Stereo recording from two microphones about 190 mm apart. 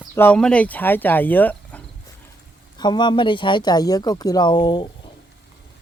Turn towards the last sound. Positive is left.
turn(degrees=25)  # may be behind; listen again after turning